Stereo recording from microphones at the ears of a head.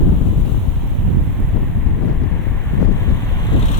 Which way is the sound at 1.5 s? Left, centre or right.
Left.